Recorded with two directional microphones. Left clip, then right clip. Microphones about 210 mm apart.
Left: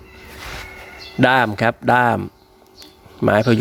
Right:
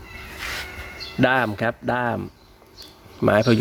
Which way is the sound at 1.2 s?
15° left (ahead or behind).